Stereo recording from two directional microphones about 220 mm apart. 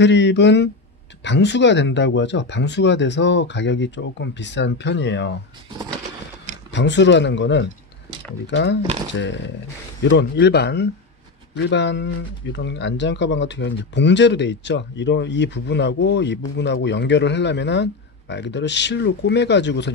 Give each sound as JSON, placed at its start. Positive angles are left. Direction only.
{"t": 0.0, "sound": "speech", "side_deg": 55}
{"t": 6.7, "sound": "speech", "side_deg": 55}